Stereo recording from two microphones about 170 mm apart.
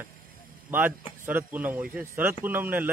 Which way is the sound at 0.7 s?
10° right (ahead or behind).